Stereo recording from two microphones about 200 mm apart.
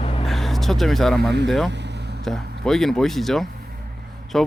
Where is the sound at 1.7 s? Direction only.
60° right (ahead or behind).